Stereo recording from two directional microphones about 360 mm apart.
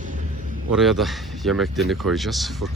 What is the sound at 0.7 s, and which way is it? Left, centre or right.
Speech, centre.